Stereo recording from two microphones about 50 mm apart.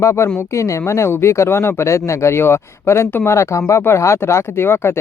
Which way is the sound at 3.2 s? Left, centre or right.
Left.